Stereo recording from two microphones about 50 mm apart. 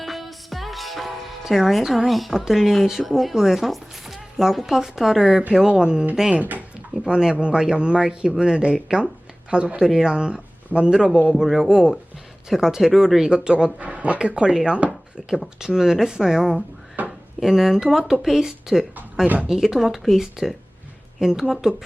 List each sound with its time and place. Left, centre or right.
0.0 s music: centre
2.0 s speech: centre
6.3 s speech: right
7.0 s speech: centre
11.3 s speech: centre
13.3 s speech: centre
13.7 s speech: right; by 16.6 s centre
17.0 s a sound: right
17.4 s speech: centre